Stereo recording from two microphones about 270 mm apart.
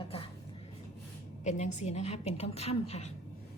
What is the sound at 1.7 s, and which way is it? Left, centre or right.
A woman's voice, left.